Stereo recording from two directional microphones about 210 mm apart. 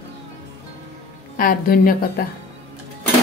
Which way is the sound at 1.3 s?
40° left (ahead or behind).